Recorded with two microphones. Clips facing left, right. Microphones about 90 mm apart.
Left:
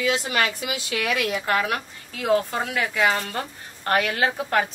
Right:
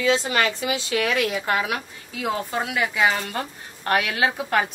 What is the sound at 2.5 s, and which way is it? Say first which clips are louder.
Speech: right 1 dB; 15° right (ahead or behind).